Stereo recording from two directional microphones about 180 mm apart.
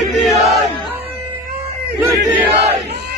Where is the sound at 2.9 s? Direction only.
65° right (ahead or behind).